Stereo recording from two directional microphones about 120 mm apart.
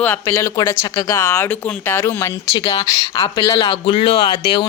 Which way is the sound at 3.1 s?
45° left (ahead or behind).